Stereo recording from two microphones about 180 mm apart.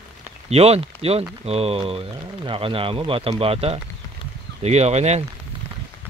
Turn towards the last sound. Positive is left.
turn(degrees=-35)  # may be behind; listen again after turning